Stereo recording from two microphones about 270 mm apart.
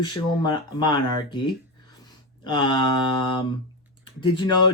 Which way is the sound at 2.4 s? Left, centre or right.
Centre.